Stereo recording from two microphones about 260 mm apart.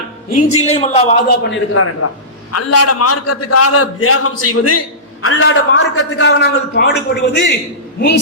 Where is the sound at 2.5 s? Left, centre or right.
Left.